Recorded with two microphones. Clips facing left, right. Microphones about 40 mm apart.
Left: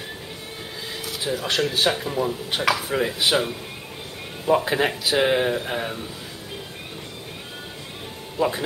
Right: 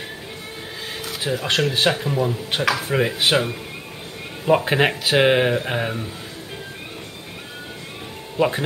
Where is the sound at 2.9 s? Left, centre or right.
Centre.